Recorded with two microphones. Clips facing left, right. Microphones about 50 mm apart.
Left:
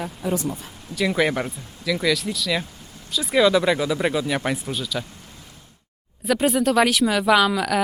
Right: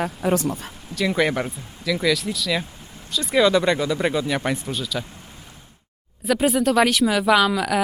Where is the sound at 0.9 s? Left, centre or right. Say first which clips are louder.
Even; centre.